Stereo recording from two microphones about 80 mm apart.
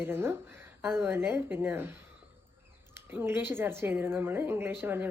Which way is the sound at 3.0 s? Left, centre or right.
Right.